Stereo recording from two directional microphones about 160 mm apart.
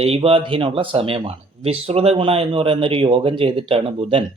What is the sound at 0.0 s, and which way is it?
Speech, 40° right (ahead or behind).